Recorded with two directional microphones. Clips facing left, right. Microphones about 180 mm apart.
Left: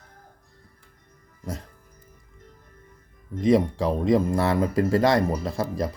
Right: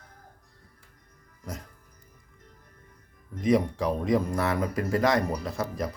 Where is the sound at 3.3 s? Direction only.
30° left (ahead or behind).